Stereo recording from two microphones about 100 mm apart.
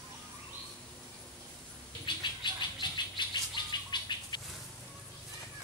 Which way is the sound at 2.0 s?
50° left (ahead or behind).